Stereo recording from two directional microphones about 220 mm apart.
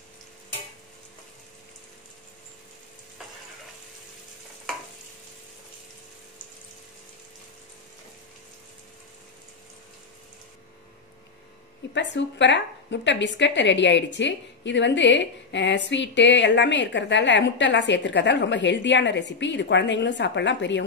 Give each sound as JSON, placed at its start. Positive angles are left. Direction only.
{"t": 11.9, "sound": "a woman's voice", "side_deg": 55}